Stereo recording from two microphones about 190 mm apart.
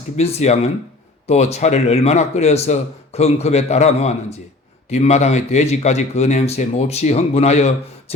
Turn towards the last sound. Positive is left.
turn(degrees=35)  # may be behind; listen again after turning